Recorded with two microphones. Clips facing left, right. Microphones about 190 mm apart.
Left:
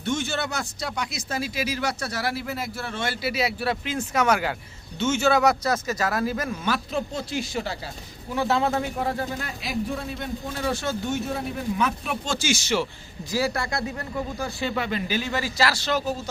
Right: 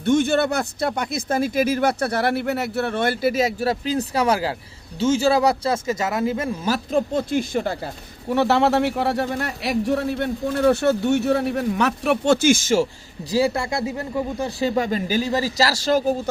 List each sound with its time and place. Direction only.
0.0 s speech: 55° right (ahead or behind); by 6.6 s 25° right (ahead or behind)
6.7 s speech: 45° right (ahead or behind)
8.3 s a man's voice: 70° right (ahead or behind); by 12.9 s 45° right (ahead or behind)
13.3 s speech: 25° right (ahead or behind); by 16.1 s 45° right (ahead or behind)